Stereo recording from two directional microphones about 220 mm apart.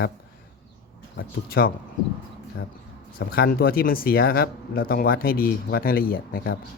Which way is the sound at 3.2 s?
45° left (ahead or behind).